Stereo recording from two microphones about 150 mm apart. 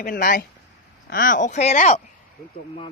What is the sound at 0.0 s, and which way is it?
Speech, 80° left.